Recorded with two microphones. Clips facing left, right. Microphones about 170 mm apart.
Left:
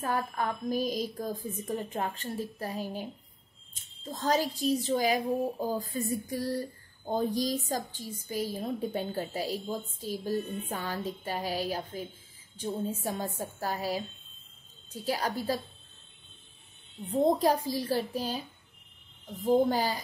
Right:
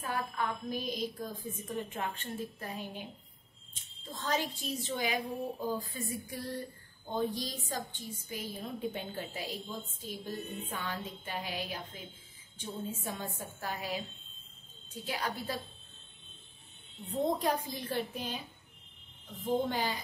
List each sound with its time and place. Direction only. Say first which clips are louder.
0.0 s a woman's voice: left 4 dB; 40° left (ahead or behind)
15.0 s a woman's voice: left 6 dB; 40° left (ahead or behind)
17.1 s a woman's voice: left 6 dB; 35° left (ahead or behind)
19.4 s a woman's voice: left 7 dB; 40° left (ahead or behind)